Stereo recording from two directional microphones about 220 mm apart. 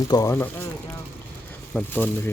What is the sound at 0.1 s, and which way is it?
Speech, 15° left (ahead or behind).